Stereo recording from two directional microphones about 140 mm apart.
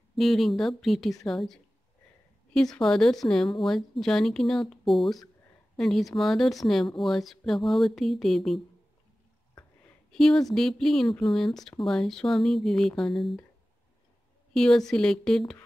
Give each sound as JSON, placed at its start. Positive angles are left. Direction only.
{"t": 0.1, "sound": "speech", "side_deg": 0}
{"t": 10.1, "sound": "speech", "side_deg": 5}
{"t": 14.5, "sound": "a woman's voice", "side_deg": 5}